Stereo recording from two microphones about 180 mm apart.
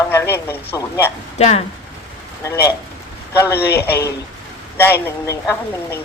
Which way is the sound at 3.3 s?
15° left (ahead or behind).